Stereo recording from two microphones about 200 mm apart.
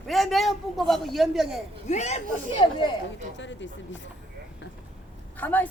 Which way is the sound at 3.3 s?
65° left (ahead or behind).